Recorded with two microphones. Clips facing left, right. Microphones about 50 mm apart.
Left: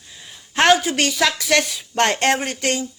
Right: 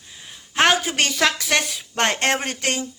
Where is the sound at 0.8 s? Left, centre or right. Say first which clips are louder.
Left 1 dB; right.